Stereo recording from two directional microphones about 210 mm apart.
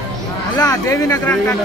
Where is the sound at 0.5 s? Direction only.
15° left (ahead or behind).